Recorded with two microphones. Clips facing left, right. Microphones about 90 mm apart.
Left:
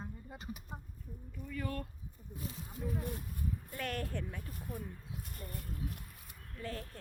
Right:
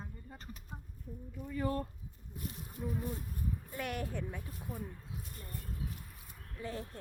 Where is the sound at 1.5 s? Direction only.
25° right (ahead or behind).